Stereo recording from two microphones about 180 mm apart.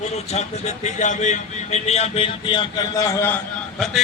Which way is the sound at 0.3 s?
40° left (ahead or behind).